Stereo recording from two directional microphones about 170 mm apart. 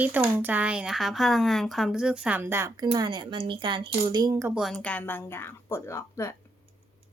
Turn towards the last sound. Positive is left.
turn(degrees=15)  # may be behind; listen again after turning